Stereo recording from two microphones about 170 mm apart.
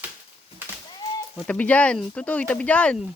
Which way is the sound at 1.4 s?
10° left (ahead or behind).